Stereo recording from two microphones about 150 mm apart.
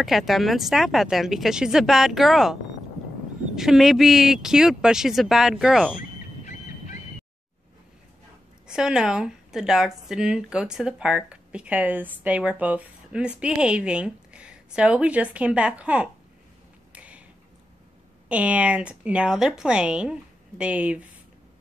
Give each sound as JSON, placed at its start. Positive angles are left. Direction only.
{"t": 0.0, "sound": "speech", "side_deg": 0}
{"t": 3.5, "sound": "speech", "side_deg": 0}
{"t": 5.9, "sound": "a sound", "side_deg": 55}
{"t": 8.6, "sound": "a woman's voice", "side_deg": -5}
{"t": 16.9, "sound": "a sound", "side_deg": -10}
{"t": 18.3, "sound": "a woman's voice", "side_deg": -10}